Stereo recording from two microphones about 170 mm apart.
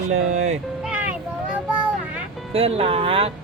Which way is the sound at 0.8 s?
5° right (ahead or behind).